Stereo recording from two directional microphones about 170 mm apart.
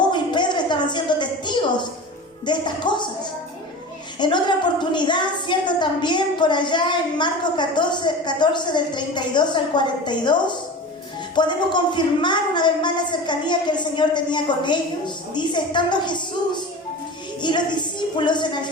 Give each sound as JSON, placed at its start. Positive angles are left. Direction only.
{"t": 0.1, "sound": "a sound", "side_deg": 25}
{"t": 2.5, "sound": "a woman's voice", "side_deg": 25}
{"t": 4.2, "sound": "a woman's voice", "side_deg": 25}